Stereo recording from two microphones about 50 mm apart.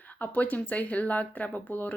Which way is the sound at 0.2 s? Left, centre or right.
Left.